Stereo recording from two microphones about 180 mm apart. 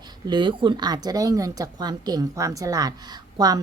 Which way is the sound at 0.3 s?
25° right (ahead or behind).